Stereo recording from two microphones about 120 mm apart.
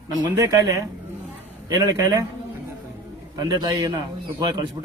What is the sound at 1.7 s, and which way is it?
Speech, 35° right (ahead or behind).